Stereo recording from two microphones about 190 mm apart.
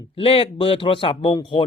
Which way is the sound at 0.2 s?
30° left (ahead or behind).